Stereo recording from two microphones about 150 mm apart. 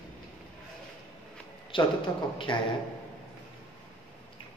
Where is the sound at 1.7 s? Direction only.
35° left (ahead or behind).